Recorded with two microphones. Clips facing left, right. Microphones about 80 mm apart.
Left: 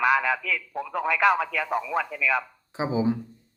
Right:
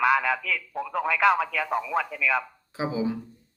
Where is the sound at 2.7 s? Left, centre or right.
Left.